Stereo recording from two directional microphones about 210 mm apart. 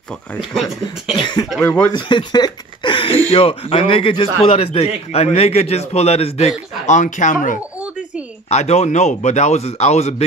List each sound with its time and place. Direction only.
1.1 s a man's voice: 20° left (ahead or behind)
1.6 s speech: 10° left (ahead or behind)
1.9 s a man's voice: 20° left (ahead or behind)